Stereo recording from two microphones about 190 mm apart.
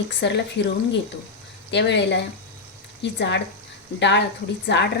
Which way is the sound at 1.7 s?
65° left (ahead or behind).